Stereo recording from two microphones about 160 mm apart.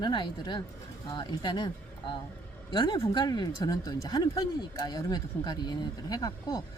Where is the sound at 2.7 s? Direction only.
30° left (ahead or behind).